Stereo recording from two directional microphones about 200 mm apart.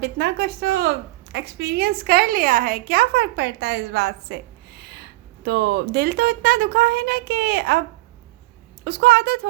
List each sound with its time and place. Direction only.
0.0 s a woman's voice: 55° right (ahead or behind)
4.8 s a sound: 55° right (ahead or behind)
5.5 s a woman's voice: 55° right (ahead or behind)